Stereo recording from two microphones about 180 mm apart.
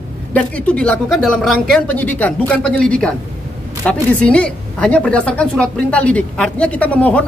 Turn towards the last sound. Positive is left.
turn(degrees=10)  # may be behind; listen again after turning